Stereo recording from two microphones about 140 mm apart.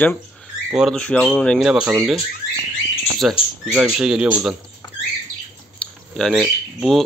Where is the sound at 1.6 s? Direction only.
5° right (ahead or behind).